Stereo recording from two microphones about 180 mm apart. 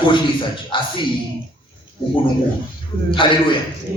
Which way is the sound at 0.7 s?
30° left (ahead or behind).